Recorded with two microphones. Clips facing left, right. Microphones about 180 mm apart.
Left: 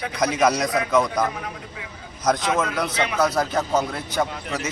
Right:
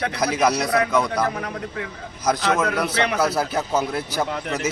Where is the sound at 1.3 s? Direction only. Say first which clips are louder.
Right 5 dB; 60° right (ahead or behind).